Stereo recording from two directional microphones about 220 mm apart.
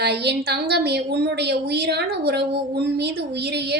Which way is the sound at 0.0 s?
50° right (ahead or behind).